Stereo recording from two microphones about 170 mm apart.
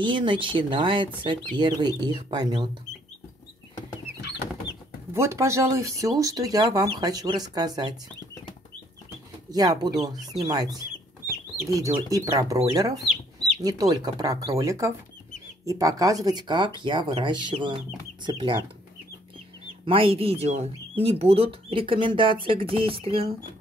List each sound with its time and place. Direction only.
0.0 s speech: 30° right (ahead or behind)
5.1 s speech: 15° right (ahead or behind)
9.5 s speech: 20° right (ahead or behind)
13.6 s speech: 20° right (ahead or behind)
19.8 s speech: 30° right (ahead or behind)